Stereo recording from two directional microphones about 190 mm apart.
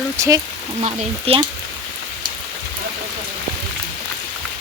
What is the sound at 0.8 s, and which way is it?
Speech, 35° right (ahead or behind).